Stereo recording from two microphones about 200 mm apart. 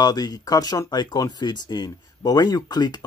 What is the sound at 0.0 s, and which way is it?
Speech, 20° left (ahead or behind).